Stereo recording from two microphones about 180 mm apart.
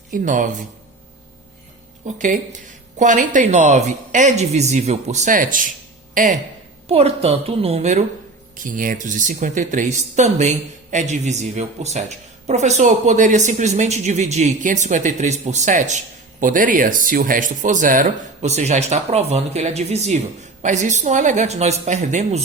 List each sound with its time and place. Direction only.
0.1 s speech: 45° right (ahead or behind)
2.0 s speech: 45° right (ahead or behind)
6.8 s speech: 35° right (ahead or behind)